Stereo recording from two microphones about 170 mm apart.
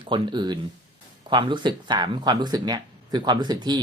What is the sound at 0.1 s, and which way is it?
Speech, 25° right (ahead or behind).